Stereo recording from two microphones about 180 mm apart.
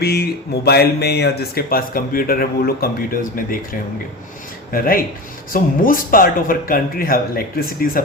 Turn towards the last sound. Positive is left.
turn(degrees=55)  # may be behind; listen again after turning